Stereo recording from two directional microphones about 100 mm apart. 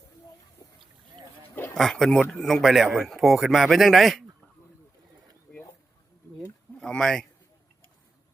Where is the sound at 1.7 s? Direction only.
Centre (ahead or behind).